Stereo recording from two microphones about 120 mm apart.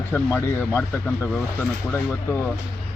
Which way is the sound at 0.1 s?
20° left (ahead or behind).